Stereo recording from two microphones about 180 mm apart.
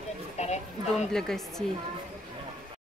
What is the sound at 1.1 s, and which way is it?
Speech, 5° left (ahead or behind).